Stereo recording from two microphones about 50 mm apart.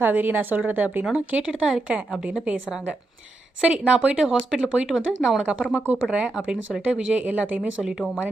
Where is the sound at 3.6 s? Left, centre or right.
Centre.